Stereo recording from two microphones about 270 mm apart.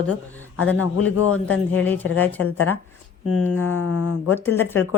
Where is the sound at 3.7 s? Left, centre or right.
Left.